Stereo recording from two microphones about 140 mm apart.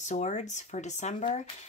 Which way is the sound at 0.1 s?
55° left (ahead or behind).